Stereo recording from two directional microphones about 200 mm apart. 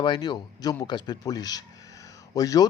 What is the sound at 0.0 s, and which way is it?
Speech, 20° left (ahead or behind).